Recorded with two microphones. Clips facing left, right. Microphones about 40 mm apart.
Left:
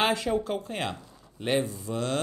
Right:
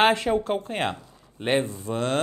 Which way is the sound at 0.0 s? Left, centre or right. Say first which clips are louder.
Right 5 dB; right.